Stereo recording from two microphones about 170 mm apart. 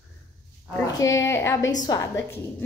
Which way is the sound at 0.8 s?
20° left (ahead or behind).